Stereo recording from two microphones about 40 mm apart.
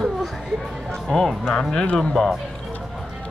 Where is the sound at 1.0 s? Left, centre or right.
Centre.